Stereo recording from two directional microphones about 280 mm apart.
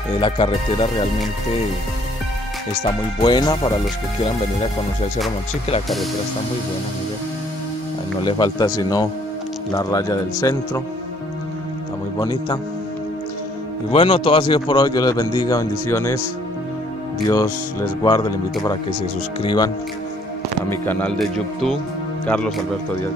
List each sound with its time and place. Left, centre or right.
0.2 s speech: centre
3.2 s a man's voice: centre
8.2 s a man's voice: centre
12.2 s a man's voice: centre
13.9 s a man's voice: centre
17.3 s a man's voice: centre
19.4 s a man's voice: centre
20.8 s speech: centre